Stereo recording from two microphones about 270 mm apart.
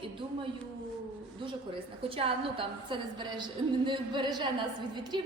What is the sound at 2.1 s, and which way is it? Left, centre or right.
A woman's voice, centre.